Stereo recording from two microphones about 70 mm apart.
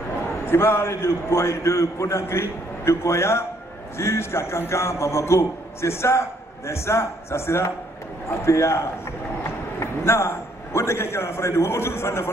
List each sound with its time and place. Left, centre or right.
0.5 s a man's voice: left